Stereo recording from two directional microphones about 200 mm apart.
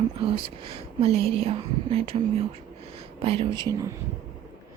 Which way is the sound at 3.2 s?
30° right (ahead or behind).